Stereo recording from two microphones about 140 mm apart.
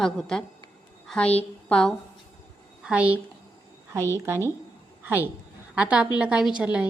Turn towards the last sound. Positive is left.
turn(degrees=-10)  # may be behind; listen again after turning